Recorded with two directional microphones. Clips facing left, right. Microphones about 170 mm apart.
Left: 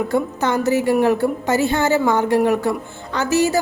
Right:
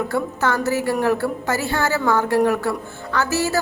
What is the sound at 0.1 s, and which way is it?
A woman's voice, 20° left (ahead or behind).